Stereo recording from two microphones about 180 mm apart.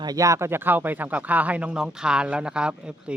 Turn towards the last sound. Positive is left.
turn(degrees=-5)  # may be behind; listen again after turning